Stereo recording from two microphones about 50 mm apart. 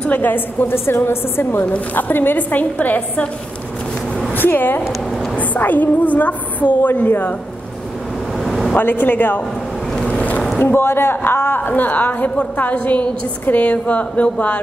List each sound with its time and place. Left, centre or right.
0.0 s a woman's voice: left
0.3 s a woman's voice: left
4.3 s a woman's voice: left
8.5 s a sound: centre
8.7 s a woman's voice: left
10.6 s a woman's voice: left